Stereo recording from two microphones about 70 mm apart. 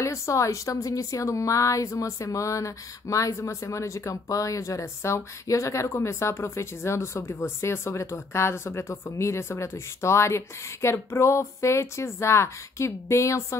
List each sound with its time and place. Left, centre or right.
0.0 s speech: left